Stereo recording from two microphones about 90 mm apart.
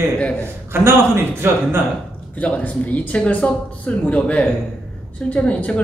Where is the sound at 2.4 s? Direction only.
15° left (ahead or behind).